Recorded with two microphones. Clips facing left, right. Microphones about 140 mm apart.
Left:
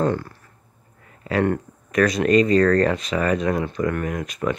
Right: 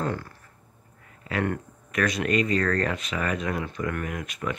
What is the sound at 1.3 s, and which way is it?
Speech, 35° left (ahead or behind).